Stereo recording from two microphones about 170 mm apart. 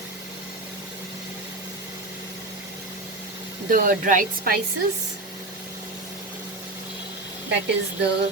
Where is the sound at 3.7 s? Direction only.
50° right (ahead or behind).